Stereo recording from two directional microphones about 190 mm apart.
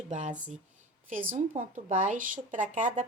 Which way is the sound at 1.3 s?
40° right (ahead or behind).